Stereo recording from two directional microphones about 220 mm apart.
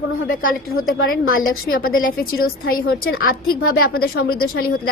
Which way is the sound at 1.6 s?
40° left (ahead or behind).